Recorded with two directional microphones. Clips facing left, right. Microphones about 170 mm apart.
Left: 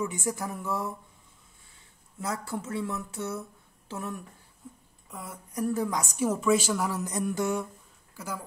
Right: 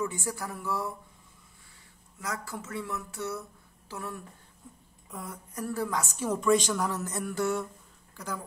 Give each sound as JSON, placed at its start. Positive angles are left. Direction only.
{"t": 0.0, "sound": "speech", "side_deg": 20}
{"t": 2.1, "sound": "speech", "side_deg": 30}
{"t": 4.6, "sound": "a sound", "side_deg": 0}
{"t": 5.5, "sound": "a woman's voice", "side_deg": 15}